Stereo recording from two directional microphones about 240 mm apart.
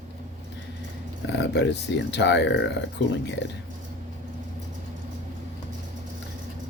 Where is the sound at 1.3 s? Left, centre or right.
Left.